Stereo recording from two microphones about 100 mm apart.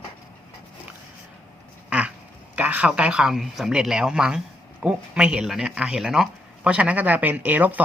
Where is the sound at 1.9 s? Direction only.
10° right (ahead or behind).